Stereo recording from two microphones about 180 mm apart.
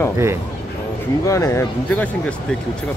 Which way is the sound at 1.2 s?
15° left (ahead or behind).